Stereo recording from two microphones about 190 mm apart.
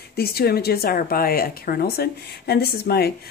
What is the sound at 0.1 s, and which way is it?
Speech, 55° left (ahead or behind).